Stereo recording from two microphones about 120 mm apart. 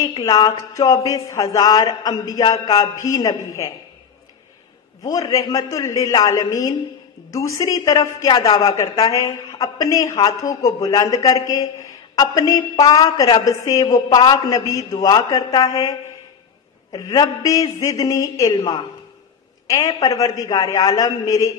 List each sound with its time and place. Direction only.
0.0 s a woman's voice: 30° left (ahead or behind)
5.0 s a woman's voice: 30° left (ahead or behind)
18.5 s a woman's voice: 40° left (ahead or behind)
20.0 s a woman's voice: 30° left (ahead or behind)